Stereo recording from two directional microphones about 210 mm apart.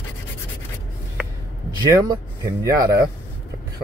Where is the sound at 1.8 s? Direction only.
15° right (ahead or behind).